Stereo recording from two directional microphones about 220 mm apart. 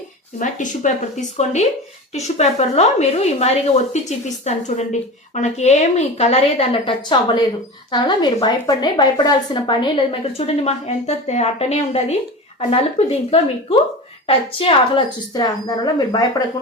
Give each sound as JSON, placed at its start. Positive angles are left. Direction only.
{"t": 0.3, "sound": "a woman's voice", "side_deg": 35}